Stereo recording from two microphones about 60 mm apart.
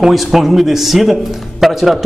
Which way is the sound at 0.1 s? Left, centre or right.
Centre.